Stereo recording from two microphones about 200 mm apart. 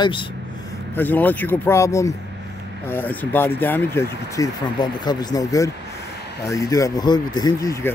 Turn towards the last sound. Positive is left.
turn(degrees=15)  # may be behind; listen again after turning